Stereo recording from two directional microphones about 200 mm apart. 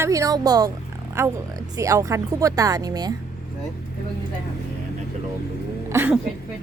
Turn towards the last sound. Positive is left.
turn(degrees=-10)  # may be behind; listen again after turning